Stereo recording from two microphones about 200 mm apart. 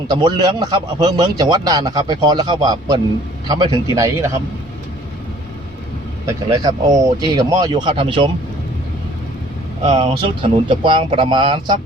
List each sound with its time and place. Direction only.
0.1 s a man's voice: 20° right (ahead or behind)
6.2 s a man's voice: 15° right (ahead or behind)
9.8 s a man's voice: 25° right (ahead or behind)